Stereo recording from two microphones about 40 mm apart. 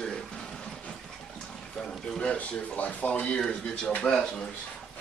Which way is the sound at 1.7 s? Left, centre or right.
Centre.